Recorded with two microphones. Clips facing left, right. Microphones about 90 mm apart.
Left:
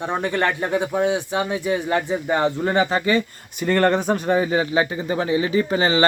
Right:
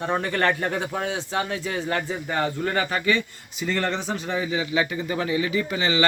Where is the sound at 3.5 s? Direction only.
55° left (ahead or behind).